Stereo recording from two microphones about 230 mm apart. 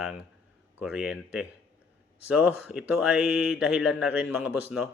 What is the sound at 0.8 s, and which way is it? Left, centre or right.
Speech, centre.